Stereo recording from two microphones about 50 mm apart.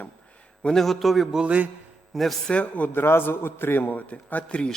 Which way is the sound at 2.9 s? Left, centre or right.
Left.